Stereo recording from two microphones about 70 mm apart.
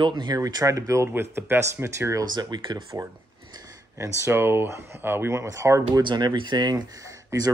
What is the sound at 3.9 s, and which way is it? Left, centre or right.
Speech, right.